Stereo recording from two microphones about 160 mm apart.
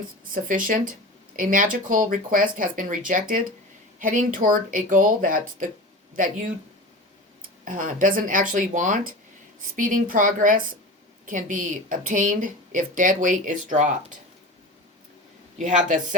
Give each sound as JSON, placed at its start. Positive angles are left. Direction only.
{"t": 0.3, "sound": "a woman's voice", "side_deg": -55}
{"t": 7.6, "sound": "a woman's voice", "side_deg": -55}